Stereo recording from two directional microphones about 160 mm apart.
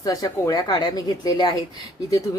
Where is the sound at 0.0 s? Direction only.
20° left (ahead or behind).